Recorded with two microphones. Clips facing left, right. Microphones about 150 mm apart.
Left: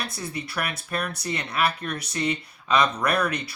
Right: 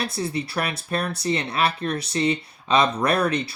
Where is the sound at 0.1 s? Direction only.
30° right (ahead or behind).